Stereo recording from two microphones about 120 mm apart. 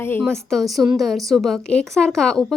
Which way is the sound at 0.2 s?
Centre (ahead or behind).